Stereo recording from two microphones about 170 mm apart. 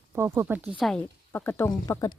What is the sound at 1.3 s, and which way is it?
Speech, 10° left (ahead or behind).